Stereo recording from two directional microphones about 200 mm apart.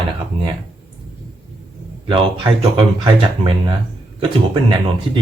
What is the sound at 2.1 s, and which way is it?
Speech, 25° right (ahead or behind).